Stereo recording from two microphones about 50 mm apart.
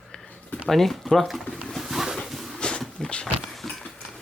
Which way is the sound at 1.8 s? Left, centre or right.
Centre.